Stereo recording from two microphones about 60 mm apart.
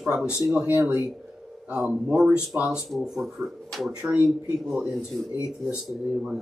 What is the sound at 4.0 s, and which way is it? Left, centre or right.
Speech, centre.